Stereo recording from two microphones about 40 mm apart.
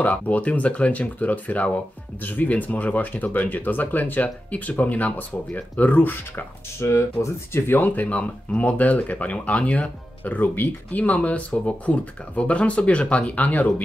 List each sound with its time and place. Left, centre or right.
0.0 s speech: left
7.2 s speech: left
7.5 s speech: left